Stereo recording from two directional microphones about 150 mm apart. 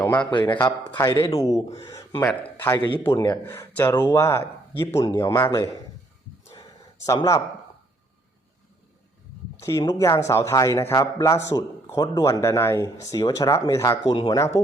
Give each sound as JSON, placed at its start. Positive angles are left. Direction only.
{"t": 0.2, "sound": "a man's voice", "side_deg": 30}
{"t": 7.0, "sound": "a man's voice", "side_deg": 25}
{"t": 9.6, "sound": "a man's voice", "side_deg": 20}
{"t": 14.1, "sound": "speech", "side_deg": 35}
{"t": 14.3, "sound": "a man's voice", "side_deg": 20}